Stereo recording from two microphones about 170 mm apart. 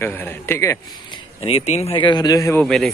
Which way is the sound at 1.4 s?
40° left (ahead or behind).